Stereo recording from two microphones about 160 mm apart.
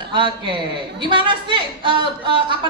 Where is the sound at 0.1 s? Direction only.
30° right (ahead or behind).